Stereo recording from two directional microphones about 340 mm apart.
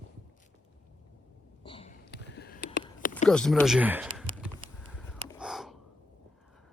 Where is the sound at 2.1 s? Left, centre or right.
Left.